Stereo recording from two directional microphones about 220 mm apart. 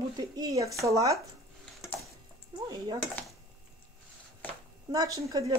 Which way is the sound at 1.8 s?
Centre (ahead or behind).